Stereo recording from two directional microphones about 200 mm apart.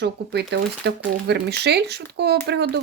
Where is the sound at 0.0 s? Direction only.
60° right (ahead or behind).